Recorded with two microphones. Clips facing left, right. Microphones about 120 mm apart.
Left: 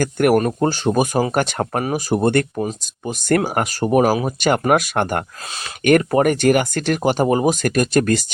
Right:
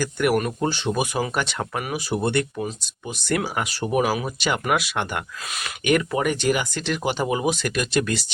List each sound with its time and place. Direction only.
0.0 s speech: 50° left (ahead or behind)